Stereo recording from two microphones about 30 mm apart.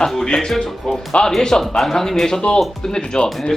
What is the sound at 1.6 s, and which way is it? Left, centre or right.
Speech, centre.